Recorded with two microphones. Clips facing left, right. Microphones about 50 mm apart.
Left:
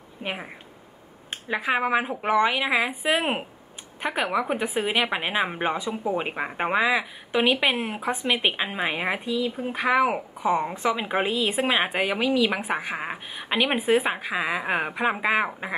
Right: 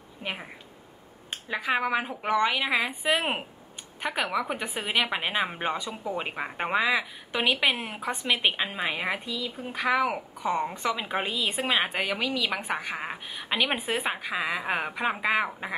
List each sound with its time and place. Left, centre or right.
0.2 s a woman's voice: centre